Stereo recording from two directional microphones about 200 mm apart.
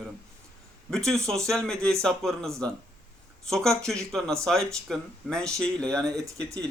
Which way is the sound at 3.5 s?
Centre (ahead or behind).